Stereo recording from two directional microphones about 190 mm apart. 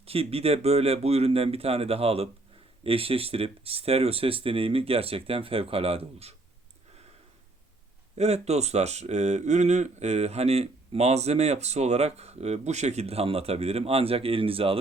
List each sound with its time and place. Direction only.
0.0 s speech: 30° right (ahead or behind)
8.2 s speech: 35° right (ahead or behind)